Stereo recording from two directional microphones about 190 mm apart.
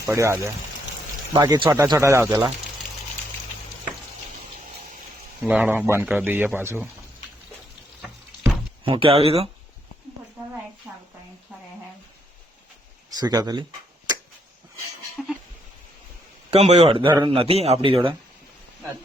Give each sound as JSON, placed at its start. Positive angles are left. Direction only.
{"t": 0.0, "sound": "a man's voice", "side_deg": -15}
{"t": 5.4, "sound": "speech", "side_deg": -10}
{"t": 8.8, "sound": "speech", "side_deg": -30}
{"t": 13.1, "sound": "a man's voice", "side_deg": -20}
{"t": 16.5, "sound": "a man's voice", "side_deg": -35}